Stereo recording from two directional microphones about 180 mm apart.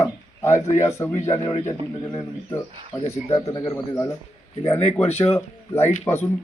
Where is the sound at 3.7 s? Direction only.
15° left (ahead or behind).